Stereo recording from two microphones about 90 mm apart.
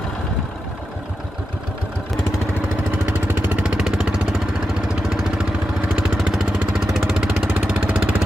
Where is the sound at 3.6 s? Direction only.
5° right (ahead or behind).